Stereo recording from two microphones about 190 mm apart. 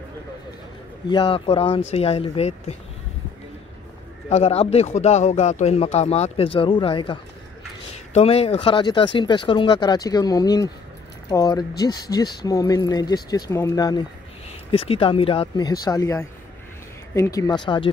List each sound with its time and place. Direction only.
1.0 s speech: 25° left (ahead or behind)
4.3 s speech: 35° left (ahead or behind)